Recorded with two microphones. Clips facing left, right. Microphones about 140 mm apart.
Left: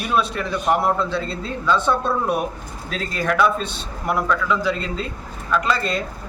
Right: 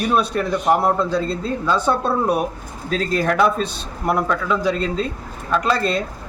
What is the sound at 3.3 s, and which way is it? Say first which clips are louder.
Speech: right 2 dB; 35° right (ahead or behind).